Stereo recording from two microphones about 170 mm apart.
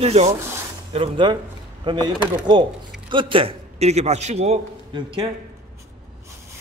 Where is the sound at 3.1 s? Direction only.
30° right (ahead or behind).